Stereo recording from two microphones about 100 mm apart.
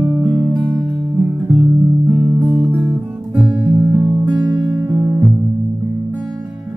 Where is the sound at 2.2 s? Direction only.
25° right (ahead or behind).